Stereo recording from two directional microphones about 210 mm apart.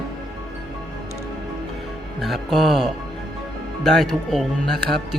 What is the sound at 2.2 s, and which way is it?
Speech, centre (ahead or behind).